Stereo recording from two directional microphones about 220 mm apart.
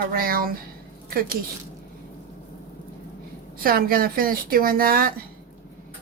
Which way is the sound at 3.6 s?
40° right (ahead or behind).